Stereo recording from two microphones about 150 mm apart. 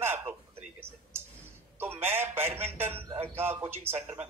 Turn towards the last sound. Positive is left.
turn(degrees=-15)  # may be behind; listen again after turning